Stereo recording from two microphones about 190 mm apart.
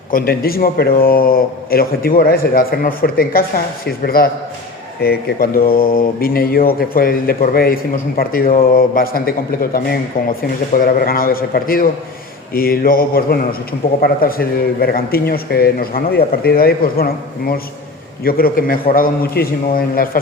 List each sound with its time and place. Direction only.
0.1 s mantra: 50° left (ahead or behind)